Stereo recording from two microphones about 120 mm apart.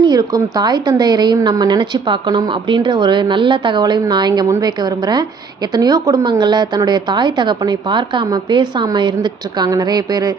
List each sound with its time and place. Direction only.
0.0 s a woman's voice: 35° right (ahead or behind)